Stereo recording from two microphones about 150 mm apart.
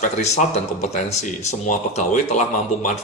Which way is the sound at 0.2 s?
50° left (ahead or behind).